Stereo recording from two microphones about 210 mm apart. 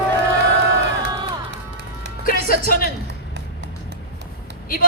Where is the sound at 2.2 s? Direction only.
45° left (ahead or behind).